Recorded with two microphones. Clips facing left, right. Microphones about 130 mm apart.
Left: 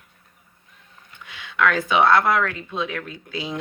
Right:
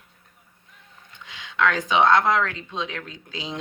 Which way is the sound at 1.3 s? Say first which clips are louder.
Left 2 dB; 25° right (ahead or behind).